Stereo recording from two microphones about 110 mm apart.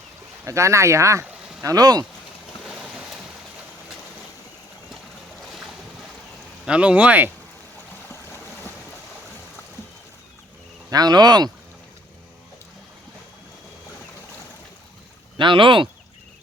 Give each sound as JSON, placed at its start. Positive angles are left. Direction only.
{"t": 0.4, "sound": "speech", "side_deg": -25}
{"t": 2.6, "sound": "stream", "side_deg": -5}
{"t": 6.7, "sound": "speech", "side_deg": -10}
{"t": 10.9, "sound": "speech", "side_deg": -40}
{"t": 15.4, "sound": "speech", "side_deg": -50}